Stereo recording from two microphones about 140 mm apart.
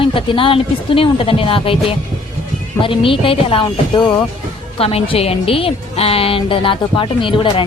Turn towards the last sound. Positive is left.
turn(degrees=35)  # may be behind; listen again after turning